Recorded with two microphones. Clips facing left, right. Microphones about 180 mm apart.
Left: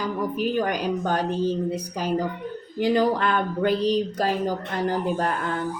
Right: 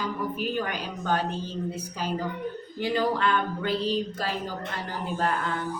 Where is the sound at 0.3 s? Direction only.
45° left (ahead or behind).